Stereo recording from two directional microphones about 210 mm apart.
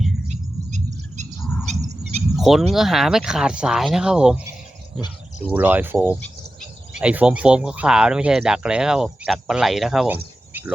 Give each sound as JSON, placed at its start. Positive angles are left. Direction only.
{"t": 0.3, "sound": "bird", "side_deg": -35}
{"t": 2.3, "sound": "speech", "side_deg": 0}
{"t": 5.5, "sound": "speech", "side_deg": -10}